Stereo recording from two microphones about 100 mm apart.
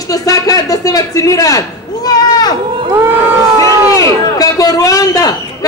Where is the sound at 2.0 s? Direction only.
40° left (ahead or behind).